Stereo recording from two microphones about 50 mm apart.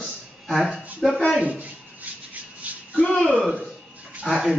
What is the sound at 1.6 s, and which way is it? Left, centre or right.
Rub, right.